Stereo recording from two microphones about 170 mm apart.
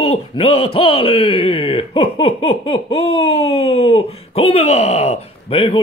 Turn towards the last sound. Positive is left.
turn(degrees=30)  # may be behind; listen again after turning